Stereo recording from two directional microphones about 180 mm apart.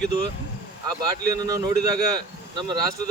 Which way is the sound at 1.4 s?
20° right (ahead or behind).